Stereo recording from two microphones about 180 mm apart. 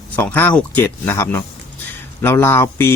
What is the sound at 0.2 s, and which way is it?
Speech, 10° left (ahead or behind).